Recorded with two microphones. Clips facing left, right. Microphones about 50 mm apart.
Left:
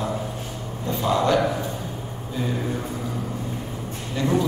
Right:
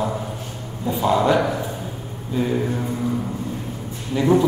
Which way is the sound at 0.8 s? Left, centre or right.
Centre.